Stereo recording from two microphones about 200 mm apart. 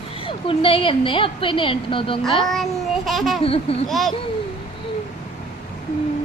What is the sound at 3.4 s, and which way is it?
Speech, 30° left (ahead or behind).